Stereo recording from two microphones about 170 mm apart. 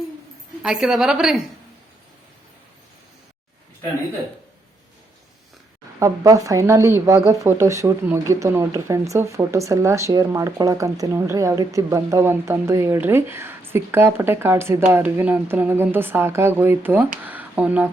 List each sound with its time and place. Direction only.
0.6 s a woman's voice: 5° right (ahead or behind)
6.0 s speech: 20° right (ahead or behind)